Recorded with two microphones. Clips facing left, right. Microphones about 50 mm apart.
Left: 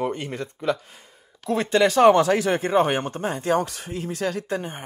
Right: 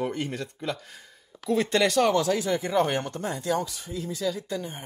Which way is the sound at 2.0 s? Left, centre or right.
Left.